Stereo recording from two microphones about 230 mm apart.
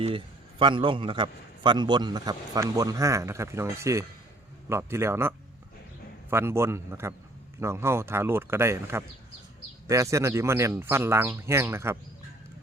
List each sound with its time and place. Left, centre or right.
0.6 s a man's voice: right
6.3 s a man's voice: centre